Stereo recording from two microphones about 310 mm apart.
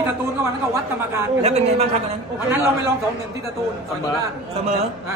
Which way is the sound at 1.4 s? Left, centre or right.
Right.